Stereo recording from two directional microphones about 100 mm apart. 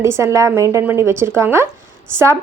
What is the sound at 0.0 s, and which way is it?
A woman's voice, 30° right (ahead or behind).